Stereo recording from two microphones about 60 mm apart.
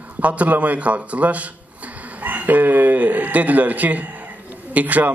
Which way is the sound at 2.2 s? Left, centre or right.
Right.